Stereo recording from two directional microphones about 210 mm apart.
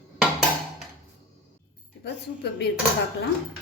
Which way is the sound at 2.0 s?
55° left (ahead or behind).